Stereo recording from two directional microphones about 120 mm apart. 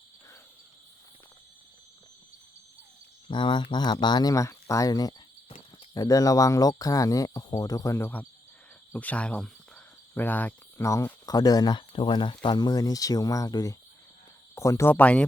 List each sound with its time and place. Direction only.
3.2 s speech: 40° left (ahead or behind); by 8.3 s 15° left (ahead or behind)
8.9 s cricket: 10° left (ahead or behind)
10.8 s speech: 25° left (ahead or behind)